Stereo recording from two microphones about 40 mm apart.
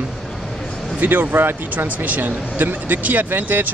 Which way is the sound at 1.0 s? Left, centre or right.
Right.